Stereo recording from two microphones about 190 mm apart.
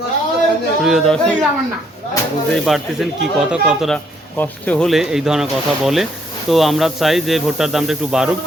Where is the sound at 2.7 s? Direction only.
Centre (ahead or behind).